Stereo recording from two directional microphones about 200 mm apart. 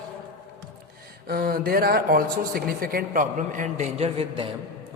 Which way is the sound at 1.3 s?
45° right (ahead or behind).